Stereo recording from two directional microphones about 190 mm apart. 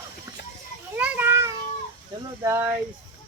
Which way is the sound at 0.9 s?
5° right (ahead or behind).